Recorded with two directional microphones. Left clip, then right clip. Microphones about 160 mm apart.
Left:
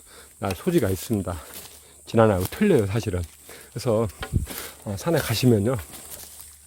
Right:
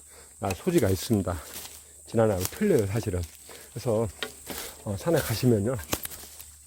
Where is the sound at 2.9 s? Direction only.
25° left (ahead or behind).